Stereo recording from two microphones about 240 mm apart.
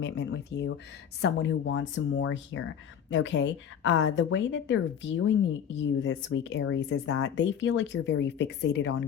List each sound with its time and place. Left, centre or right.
0.0 s speech: left